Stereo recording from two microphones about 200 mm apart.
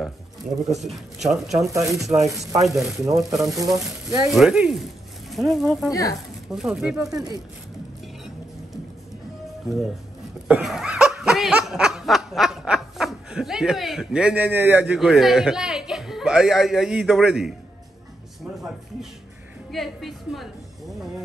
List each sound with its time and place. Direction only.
0.7 s speech: centre (ahead or behind)
1.6 s speech: 15° right (ahead or behind)
1.9 s speech: centre (ahead or behind)
2.5 s speech: 15° right (ahead or behind)
4.3 s speech: centre (ahead or behind)
5.9 s speech: 15° left (ahead or behind)
6.1 s speech: centre (ahead or behind)
10.5 s snicker: 5° right (ahead or behind)
19.7 s speech: centre (ahead or behind)